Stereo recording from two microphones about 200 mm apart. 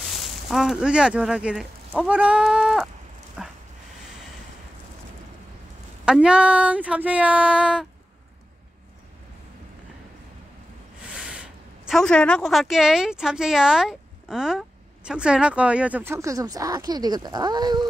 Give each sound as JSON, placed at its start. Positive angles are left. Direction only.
{"t": 0.0, "sound": "speech", "side_deg": 0}
{"t": 3.4, "sound": "dog", "side_deg": -5}
{"t": 6.0, "sound": "speech", "side_deg": -5}
{"t": 11.1, "sound": "a woman's voice", "side_deg": -5}